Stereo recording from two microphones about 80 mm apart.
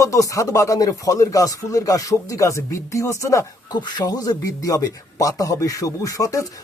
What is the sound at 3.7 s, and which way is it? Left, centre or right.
Speech, left.